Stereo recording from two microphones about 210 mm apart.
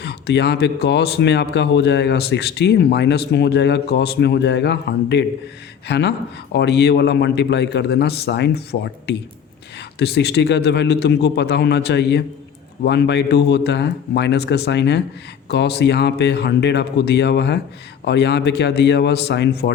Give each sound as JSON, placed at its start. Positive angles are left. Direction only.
{"t": 0.0, "sound": "speech", "side_deg": 50}